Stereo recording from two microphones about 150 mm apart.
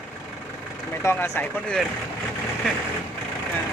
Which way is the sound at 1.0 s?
15° left (ahead or behind).